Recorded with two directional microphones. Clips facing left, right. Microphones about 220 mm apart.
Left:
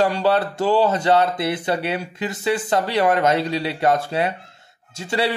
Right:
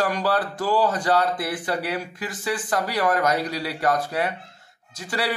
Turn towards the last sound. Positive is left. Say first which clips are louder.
# left 5 dB
turn(degrees=25)  # may be behind; listen again after turning